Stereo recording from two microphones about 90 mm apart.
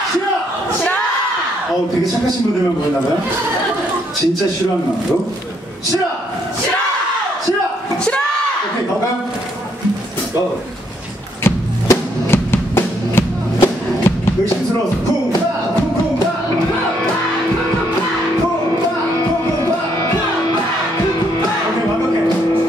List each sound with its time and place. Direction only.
11.4 s music: 25° left (ahead or behind)